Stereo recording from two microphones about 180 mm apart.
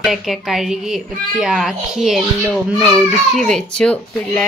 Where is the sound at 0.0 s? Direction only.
Centre (ahead or behind).